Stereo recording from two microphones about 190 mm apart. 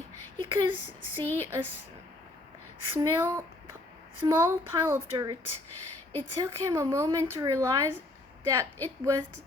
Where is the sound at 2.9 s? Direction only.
15° right (ahead or behind).